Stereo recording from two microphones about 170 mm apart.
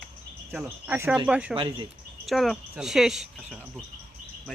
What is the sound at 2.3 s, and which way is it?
Speech, centre (ahead or behind).